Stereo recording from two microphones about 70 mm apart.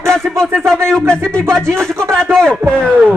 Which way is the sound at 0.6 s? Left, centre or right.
Centre.